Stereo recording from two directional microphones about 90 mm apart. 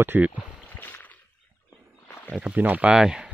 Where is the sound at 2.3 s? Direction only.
15° right (ahead or behind).